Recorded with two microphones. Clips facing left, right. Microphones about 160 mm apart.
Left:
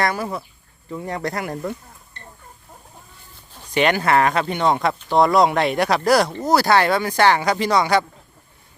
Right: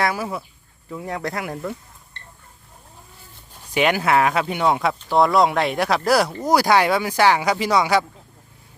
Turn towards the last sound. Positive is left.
turn(degrees=-10)  # may be behind; listen again after turning